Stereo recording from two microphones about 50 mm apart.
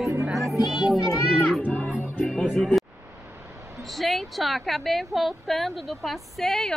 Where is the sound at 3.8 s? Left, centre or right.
Centre.